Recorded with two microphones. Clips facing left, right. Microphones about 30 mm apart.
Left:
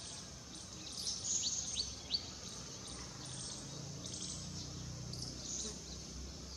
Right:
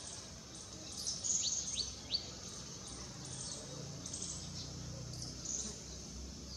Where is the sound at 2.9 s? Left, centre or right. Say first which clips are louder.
Even; left.